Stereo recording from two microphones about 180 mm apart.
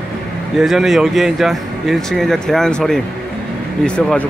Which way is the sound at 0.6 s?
Centre (ahead or behind).